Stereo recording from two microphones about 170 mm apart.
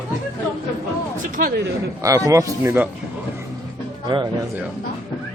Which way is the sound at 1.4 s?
60° right (ahead or behind).